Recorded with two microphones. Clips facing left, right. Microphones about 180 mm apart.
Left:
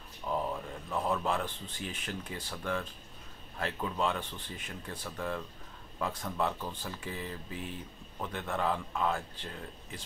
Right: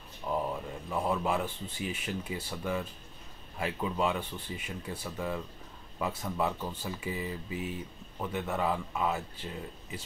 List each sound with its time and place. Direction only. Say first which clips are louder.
0.3 s speech: right 1 dB; 10° right (ahead or behind)